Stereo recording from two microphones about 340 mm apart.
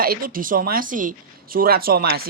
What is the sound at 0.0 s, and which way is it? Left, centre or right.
Speech, right.